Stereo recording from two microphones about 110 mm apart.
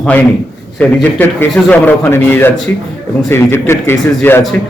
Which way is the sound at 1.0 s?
15° left (ahead or behind).